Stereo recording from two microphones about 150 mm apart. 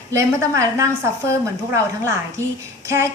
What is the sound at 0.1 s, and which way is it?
A woman's voice, 20° right (ahead or behind).